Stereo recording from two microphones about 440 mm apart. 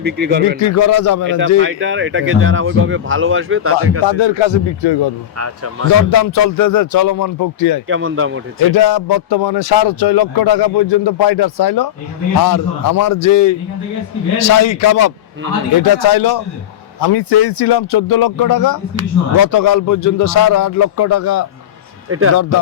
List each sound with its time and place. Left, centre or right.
0.0 s speech: right
0.6 s speech: left
1.3 s speech: right
4.0 s a man's voice: left
5.4 s speech: right
6.1 s speech: left
7.9 s speech: right
8.7 s speech: left
9.3 s a man's voice: left
15.8 s a man's voice: left
18.1 s speech: left